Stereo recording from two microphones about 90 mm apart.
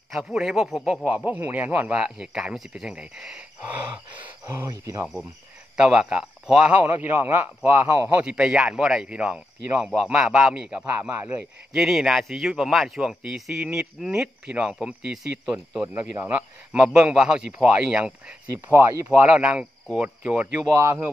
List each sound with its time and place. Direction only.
0.1 s a man's voice: 5° right (ahead or behind)
1.0 s speech: 15° right (ahead or behind)
4.6 s speech: 40° right (ahead or behind)
5.8 s speech: 10° right (ahead or behind)
10.9 s speech: 25° right (ahead or behind)
11.7 s a man's voice: 5° right (ahead or behind)
16.7 s speech: 10° right (ahead or behind)
18.5 s speech: 30° right (ahead or behind)
19.2 s speech: 15° right (ahead or behind)
20.7 s speech: 35° right (ahead or behind)